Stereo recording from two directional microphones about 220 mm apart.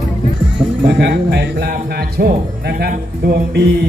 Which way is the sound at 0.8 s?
50° right (ahead or behind).